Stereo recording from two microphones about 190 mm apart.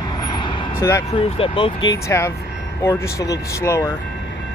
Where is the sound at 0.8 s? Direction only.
15° left (ahead or behind).